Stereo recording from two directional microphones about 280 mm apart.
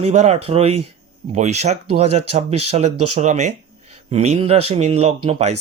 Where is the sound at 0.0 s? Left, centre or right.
Right.